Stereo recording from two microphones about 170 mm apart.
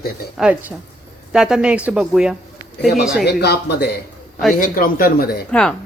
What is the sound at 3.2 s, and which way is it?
Speech, 75° left (ahead or behind).